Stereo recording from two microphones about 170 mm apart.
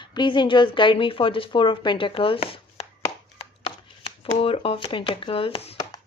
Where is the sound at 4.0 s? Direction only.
35° left (ahead or behind).